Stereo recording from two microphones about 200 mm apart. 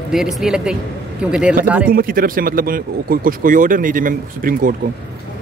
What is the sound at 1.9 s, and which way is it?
Speech, 45° right (ahead or behind).